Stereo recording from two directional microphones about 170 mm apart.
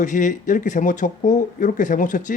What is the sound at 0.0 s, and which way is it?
Speech, 50° left (ahead or behind).